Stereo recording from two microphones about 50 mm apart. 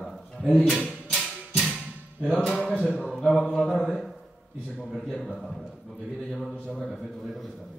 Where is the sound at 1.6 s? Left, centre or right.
Left.